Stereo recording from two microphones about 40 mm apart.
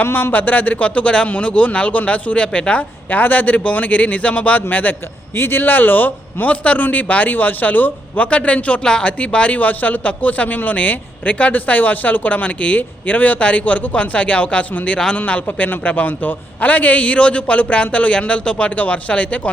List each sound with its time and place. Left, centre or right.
0.0 s speech: left
0.3 s speech: left
3.1 s speech: left
5.4 s a man's voice: left
8.8 s speech: left
9.6 s speech: left